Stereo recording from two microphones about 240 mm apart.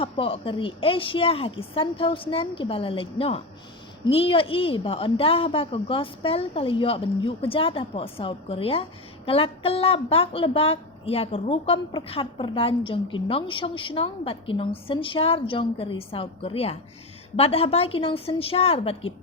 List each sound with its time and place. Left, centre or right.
0.0 s a woman's voice: left